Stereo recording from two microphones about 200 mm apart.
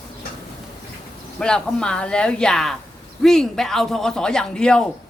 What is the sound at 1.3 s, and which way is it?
A man's voice, 5° left (ahead or behind).